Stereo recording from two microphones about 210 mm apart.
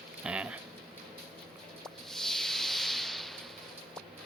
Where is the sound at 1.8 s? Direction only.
Centre (ahead or behind).